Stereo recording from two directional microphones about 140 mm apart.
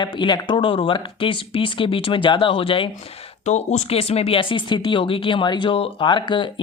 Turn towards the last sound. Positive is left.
turn(degrees=35)  # may be behind; listen again after turning